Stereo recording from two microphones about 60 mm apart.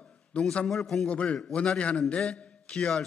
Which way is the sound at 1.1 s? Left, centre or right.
Left.